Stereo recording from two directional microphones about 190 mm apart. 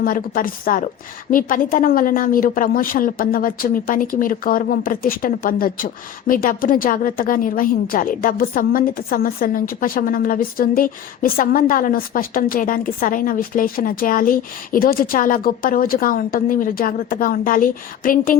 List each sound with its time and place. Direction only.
0.0 s a woman's voice: 50° left (ahead or behind)